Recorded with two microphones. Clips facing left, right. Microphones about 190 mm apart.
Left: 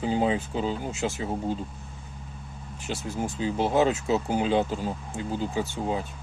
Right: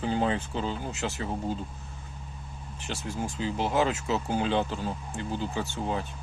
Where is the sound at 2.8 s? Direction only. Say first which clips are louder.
Left 3 dB; 20° left (ahead or behind).